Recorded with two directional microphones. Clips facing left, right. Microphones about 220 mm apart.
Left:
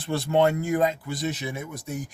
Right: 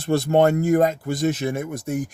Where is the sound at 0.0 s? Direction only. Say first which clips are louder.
Right 4 dB; 45° right (ahead or behind).